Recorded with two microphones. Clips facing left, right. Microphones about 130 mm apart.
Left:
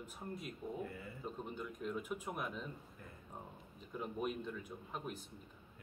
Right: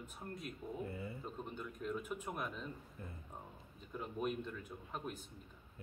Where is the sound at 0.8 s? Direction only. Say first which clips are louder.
Right 2 dB; 25° right (ahead or behind).